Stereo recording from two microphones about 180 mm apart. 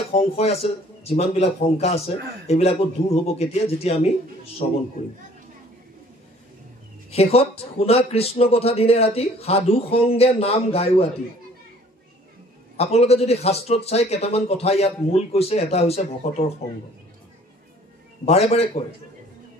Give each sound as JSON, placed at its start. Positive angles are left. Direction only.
{"t": 0.2, "sound": "speech", "side_deg": 35}
{"t": 7.1, "sound": "speech", "side_deg": 35}
{"t": 12.7, "sound": "speech", "side_deg": 35}
{"t": 18.2, "sound": "speech", "side_deg": 35}